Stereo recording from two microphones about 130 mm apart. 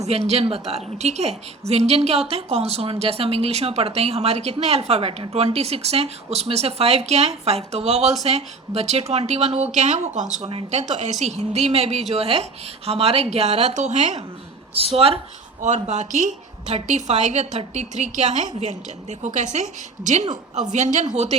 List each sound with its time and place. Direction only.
0.1 s a woman's voice: 55° right (ahead or behind)
14.8 s a woman's voice: 50° right (ahead or behind)
15.6 s a woman's voice: 65° right (ahead or behind)